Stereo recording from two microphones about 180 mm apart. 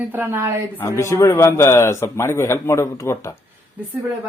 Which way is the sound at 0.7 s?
15° left (ahead or behind).